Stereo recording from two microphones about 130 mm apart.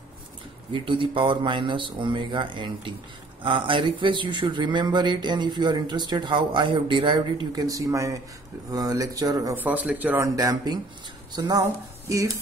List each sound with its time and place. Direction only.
0.7 s speech: 40° right (ahead or behind)
7.5 s speech: 25° right (ahead or behind)
9.6 s speech: 10° right (ahead or behind)
10.2 s speech: 25° right (ahead or behind)